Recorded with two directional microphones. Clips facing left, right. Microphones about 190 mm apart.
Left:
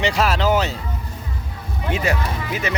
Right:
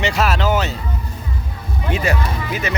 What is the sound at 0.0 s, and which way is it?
Speech, 30° left (ahead or behind).